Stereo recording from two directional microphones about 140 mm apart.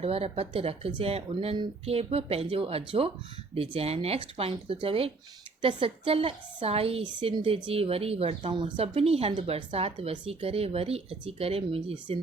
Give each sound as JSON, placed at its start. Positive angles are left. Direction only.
{"t": 0.0, "sound": "a woman's voice", "side_deg": -45}